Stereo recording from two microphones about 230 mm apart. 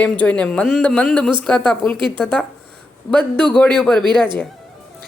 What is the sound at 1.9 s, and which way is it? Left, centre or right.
Speech, right.